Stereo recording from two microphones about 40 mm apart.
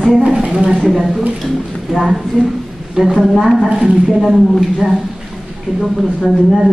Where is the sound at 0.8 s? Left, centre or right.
Centre.